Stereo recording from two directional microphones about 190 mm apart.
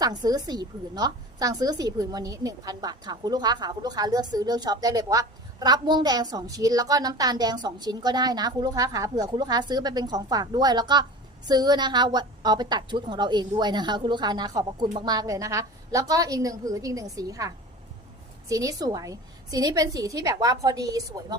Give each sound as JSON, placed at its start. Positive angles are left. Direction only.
{"t": 0.0, "sound": "a woman's voice", "side_deg": -20}